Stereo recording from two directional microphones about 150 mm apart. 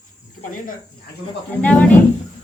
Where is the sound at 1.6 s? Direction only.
10° left (ahead or behind).